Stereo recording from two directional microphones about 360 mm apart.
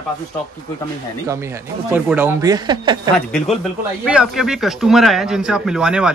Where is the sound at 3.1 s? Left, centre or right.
Centre.